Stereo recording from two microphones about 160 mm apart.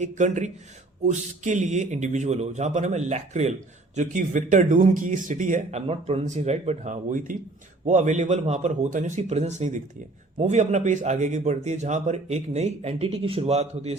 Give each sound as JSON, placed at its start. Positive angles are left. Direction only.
{"t": 0.0, "sound": "a man's voice", "side_deg": -50}
{"t": 5.8, "sound": "a man's voice", "side_deg": -40}